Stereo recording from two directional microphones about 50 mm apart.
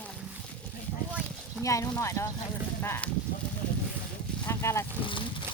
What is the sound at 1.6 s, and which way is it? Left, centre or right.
Speech, left.